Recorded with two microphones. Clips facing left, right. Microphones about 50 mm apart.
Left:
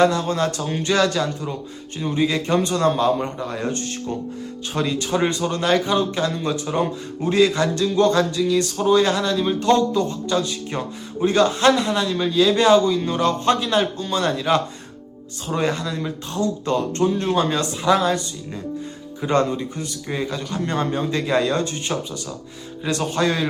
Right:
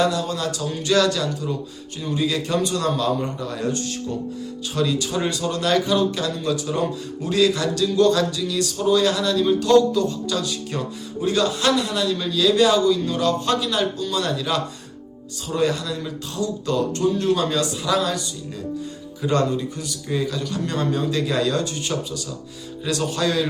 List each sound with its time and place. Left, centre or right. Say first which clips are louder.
0.0 s speech: left 4 dB; left
19.2 s a man's voice: left 1 dB; left